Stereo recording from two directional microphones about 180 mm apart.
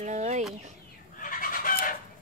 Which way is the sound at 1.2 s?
50° left (ahead or behind).